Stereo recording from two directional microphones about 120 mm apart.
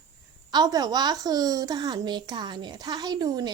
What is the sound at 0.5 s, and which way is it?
A woman's voice, 35° right (ahead or behind).